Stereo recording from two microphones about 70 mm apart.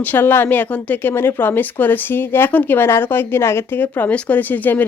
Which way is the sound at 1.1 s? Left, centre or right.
Left.